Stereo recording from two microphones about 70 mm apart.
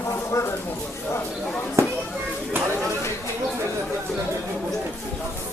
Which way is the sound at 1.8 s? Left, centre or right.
Right.